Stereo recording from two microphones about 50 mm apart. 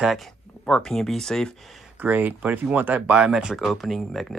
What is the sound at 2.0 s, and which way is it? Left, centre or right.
Speech, right.